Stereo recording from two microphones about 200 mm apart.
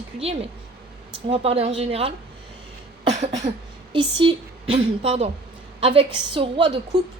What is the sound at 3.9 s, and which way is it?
A woman's voice, 25° right (ahead or behind).